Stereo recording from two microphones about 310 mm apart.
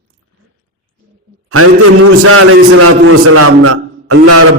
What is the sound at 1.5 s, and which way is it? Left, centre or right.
A man's voice, right.